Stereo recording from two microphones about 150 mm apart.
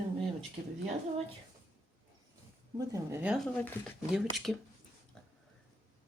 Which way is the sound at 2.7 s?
20° right (ahead or behind).